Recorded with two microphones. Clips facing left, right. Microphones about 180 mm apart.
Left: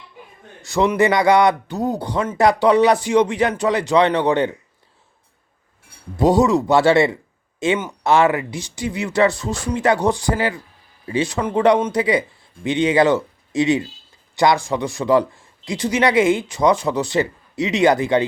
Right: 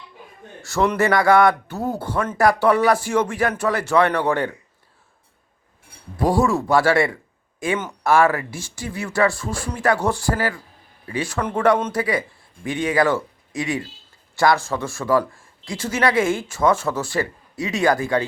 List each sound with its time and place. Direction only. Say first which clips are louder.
0.6 s speech: left 3 dB; 15° left (ahead or behind)
6.1 s speech: left 4 dB; 20° left (ahead or behind)